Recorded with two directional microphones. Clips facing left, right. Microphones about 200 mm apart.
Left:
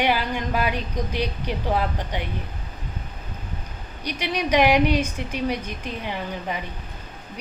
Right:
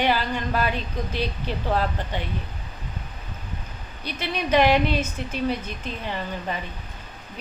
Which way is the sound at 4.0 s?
15° left (ahead or behind).